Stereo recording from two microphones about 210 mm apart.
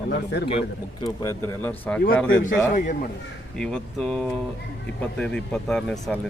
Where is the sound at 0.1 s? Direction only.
55° left (ahead or behind).